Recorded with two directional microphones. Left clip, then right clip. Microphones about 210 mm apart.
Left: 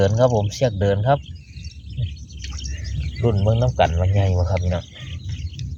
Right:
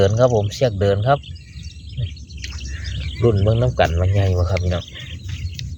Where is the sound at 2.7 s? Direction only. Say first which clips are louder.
Right 4 dB; 10° right (ahead or behind).